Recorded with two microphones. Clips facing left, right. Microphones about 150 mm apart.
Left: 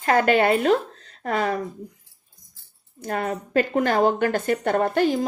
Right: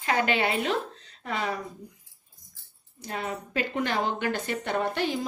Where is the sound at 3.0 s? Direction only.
50° left (ahead or behind).